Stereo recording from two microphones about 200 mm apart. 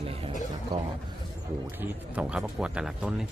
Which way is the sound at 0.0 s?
30° right (ahead or behind).